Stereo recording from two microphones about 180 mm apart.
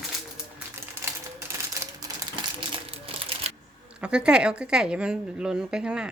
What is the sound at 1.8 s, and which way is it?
Typewriter, 20° right (ahead or behind).